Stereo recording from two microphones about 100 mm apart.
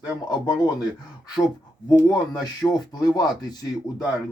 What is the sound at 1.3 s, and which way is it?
Speech, 40° left (ahead or behind).